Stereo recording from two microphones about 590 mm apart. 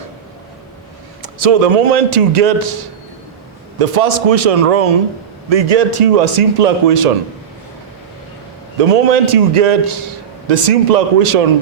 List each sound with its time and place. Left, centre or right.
1.2 s a man's voice: right
3.8 s a man's voice: right
8.8 s a man's voice: right